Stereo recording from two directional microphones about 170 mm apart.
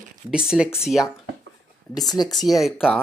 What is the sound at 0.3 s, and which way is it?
Speech, 5° right (ahead or behind).